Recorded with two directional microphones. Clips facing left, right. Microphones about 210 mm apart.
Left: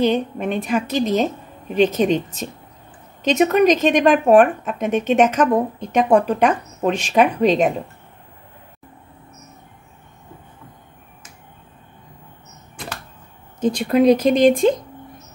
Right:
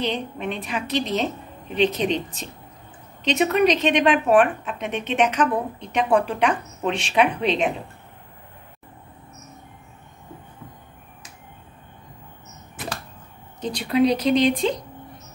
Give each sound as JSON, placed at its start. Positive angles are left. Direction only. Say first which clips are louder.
{"t": 0.0, "sound": "a woman's voice", "louder": "left 8 dB", "side_deg": 45}
{"t": 13.6, "sound": "a woman's voice", "louder": "left 4 dB", "side_deg": 45}